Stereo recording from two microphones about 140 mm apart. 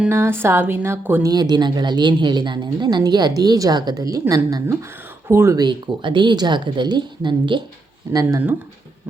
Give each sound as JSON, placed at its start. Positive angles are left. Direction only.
{"t": 0.1, "sound": "speech", "side_deg": -20}
{"t": 1.3, "sound": "a woman's voice", "side_deg": -30}
{"t": 5.6, "sound": "a woman's voice", "side_deg": -35}